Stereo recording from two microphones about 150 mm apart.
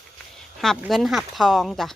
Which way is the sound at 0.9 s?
Centre (ahead or behind).